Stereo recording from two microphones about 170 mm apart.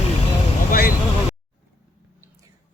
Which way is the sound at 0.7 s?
55° left (ahead or behind).